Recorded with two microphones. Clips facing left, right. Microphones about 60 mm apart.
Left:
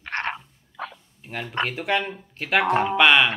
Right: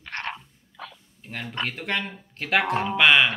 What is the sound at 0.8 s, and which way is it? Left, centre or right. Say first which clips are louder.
Bow-wow: left 6 dB; left.